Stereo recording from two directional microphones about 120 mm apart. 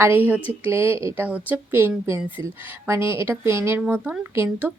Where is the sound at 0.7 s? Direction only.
20° right (ahead or behind).